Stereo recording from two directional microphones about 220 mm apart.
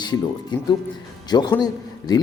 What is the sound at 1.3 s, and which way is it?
Speech, 20° left (ahead or behind).